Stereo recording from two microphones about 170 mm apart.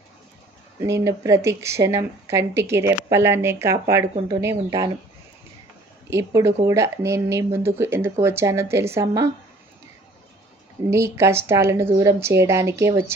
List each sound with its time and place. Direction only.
0.8 s speech: 15° right (ahead or behind)
6.1 s speech: 15° right (ahead or behind)
10.9 s speech: 15° right (ahead or behind)